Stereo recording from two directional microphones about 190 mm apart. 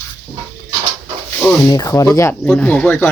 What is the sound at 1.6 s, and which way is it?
Speech, 15° left (ahead or behind).